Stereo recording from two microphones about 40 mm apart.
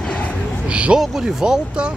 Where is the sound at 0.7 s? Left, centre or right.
Right.